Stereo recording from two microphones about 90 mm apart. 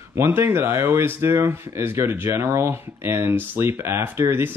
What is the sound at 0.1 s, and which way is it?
Speech, 25° right (ahead or behind).